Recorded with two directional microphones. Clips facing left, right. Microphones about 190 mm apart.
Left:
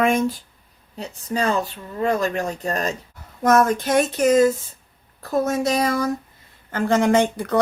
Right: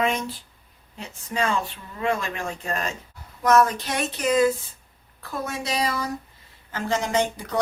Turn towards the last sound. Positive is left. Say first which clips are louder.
# left 6 dB
turn(degrees=55)  # may be behind; listen again after turning